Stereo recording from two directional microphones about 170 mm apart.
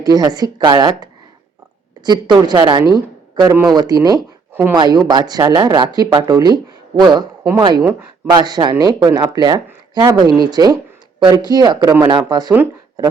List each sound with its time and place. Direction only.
0.0 s speech: 20° right (ahead or behind)
2.9 s a sound: 25° right (ahead or behind)
3.5 s speech: 20° right (ahead or behind)
8.4 s speech: 25° right (ahead or behind)